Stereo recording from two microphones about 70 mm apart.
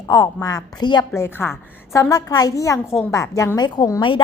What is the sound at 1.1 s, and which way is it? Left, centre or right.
Speech, left.